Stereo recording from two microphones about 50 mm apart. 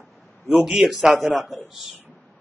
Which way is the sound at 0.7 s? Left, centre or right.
Centre.